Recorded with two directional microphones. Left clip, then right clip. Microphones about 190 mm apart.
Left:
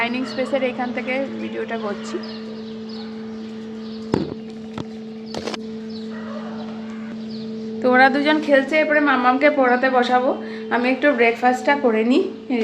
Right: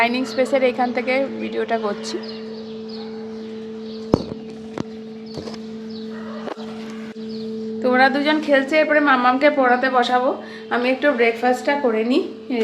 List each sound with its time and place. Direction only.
0.0 s a woman's voice: 35° right (ahead or behind)
7.8 s a woman's voice: 5° left (ahead or behind)